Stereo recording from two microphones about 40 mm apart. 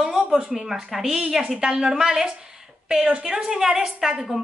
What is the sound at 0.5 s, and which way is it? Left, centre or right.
A woman's voice, centre.